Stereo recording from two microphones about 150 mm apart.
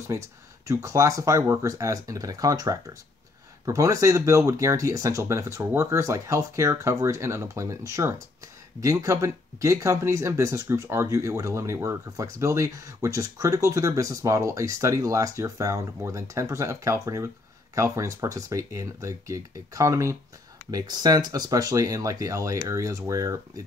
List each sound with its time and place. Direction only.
0.7 s speech: 20° right (ahead or behind)